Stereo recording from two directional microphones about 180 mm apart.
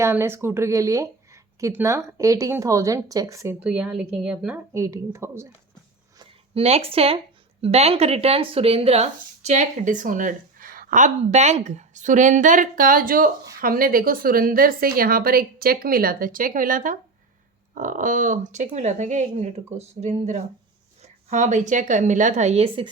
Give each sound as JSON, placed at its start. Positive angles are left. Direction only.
{"t": 0.0, "sound": "speech", "side_deg": -15}
{"t": 3.6, "sound": "speech", "side_deg": -5}
{"t": 4.7, "sound": "speech", "side_deg": -15}
{"t": 6.1, "sound": "speech", "side_deg": -35}